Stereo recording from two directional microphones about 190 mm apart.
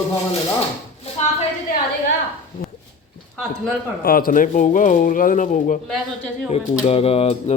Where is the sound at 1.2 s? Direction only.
35° left (ahead or behind).